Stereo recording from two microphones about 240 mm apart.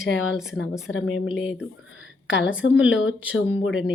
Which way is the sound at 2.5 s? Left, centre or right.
Centre.